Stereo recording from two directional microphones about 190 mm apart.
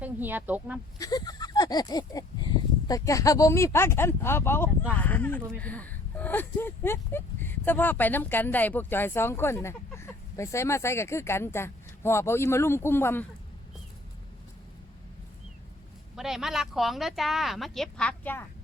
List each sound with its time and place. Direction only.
0.0 s speech: 10° right (ahead or behind)
0.9 s speech: 20° left (ahead or behind)
16.1 s speech: centre (ahead or behind)